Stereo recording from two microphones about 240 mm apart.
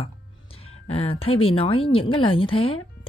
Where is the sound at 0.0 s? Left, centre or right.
Left.